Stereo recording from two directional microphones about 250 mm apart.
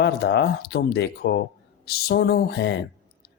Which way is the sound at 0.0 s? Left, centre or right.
Left.